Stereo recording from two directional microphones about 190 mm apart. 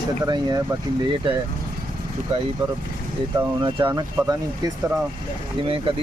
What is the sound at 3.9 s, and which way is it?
Speech, 15° right (ahead or behind).